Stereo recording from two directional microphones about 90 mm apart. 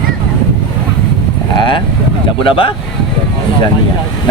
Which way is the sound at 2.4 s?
80° left.